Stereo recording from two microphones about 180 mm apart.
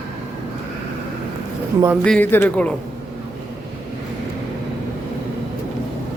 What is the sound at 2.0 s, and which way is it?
Speech, 10° left (ahead or behind).